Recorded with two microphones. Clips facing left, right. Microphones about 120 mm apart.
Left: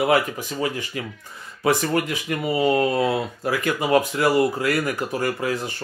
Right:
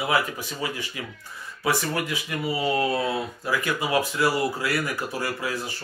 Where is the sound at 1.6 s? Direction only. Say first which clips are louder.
Left 5 dB; 50° left (ahead or behind).